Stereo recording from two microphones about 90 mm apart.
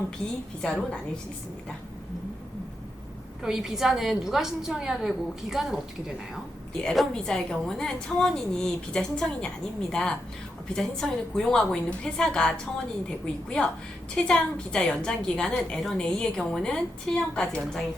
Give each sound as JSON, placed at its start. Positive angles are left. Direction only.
{"t": 0.6, "sound": "a woman's voice", "side_deg": 10}
{"t": 3.4, "sound": "a woman's voice", "side_deg": -5}
{"t": 6.8, "sound": "a woman's voice", "side_deg": 5}